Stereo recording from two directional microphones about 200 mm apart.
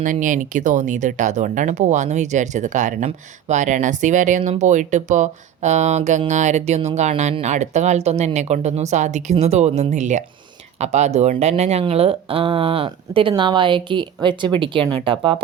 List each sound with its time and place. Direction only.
0.0 s speech: 40° right (ahead or behind)